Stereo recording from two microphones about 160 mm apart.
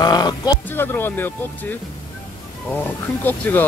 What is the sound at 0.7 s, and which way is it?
Speech, 15° left (ahead or behind).